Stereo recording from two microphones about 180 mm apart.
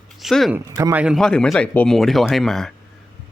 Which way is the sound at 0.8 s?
15° right (ahead or behind).